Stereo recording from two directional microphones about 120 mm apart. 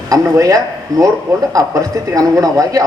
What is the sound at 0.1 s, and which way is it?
A man's voice, 30° right (ahead or behind).